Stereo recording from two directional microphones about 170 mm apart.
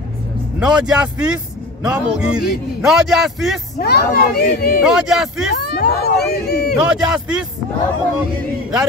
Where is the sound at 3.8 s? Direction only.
70° left (ahead or behind).